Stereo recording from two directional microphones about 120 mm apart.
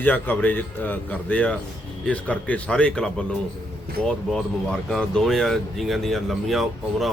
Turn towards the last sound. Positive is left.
turn(degrees=0)  # may be behind; listen again after turning